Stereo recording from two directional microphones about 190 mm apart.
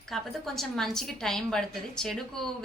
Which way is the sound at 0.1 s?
Centre (ahead or behind).